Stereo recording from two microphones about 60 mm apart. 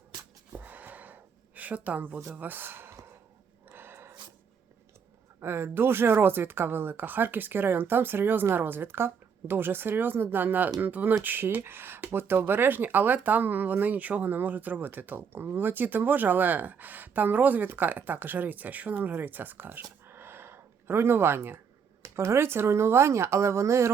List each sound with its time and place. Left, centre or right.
0.5 s gasp: right
2.4 s speech: right
3.7 s a sound: right
5.4 s speech: right
20.1 s a sound: right
22.0 s speech: right